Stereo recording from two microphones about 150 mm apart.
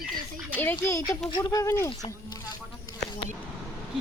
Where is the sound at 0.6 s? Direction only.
15° left (ahead or behind).